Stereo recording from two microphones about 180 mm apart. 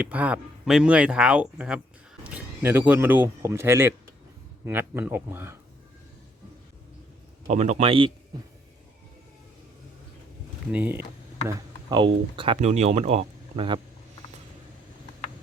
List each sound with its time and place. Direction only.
0.0 s speech: 10° right (ahead or behind)
7.4 s speech: 40° right (ahead or behind)
10.7 s speech: 10° right (ahead or behind)
11.4 s speech: 25° right (ahead or behind)